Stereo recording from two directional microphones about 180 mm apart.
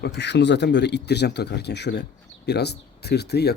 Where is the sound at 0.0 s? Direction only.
70° left (ahead or behind).